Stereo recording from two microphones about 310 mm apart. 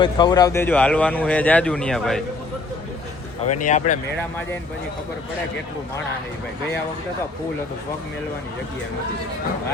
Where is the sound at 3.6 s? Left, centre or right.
Left.